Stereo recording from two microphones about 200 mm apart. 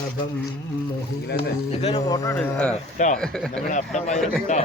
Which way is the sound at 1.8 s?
30° left (ahead or behind).